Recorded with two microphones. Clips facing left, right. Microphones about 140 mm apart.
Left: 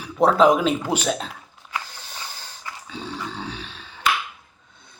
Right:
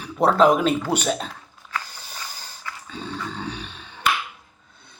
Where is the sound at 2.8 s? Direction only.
5° left (ahead or behind).